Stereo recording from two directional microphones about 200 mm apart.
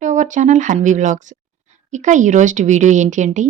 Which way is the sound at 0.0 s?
40° right (ahead or behind).